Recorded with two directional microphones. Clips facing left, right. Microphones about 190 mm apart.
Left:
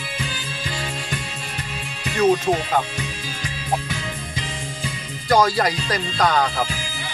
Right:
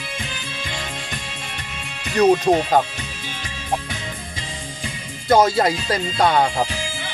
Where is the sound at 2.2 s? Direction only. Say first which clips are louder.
Right 3 dB; 35° right (ahead or behind).